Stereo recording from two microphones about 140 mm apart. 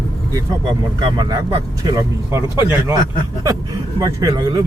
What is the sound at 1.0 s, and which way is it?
Speech, 30° right (ahead or behind).